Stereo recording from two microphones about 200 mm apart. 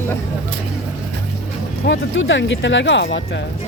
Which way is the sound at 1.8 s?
65° left (ahead or behind).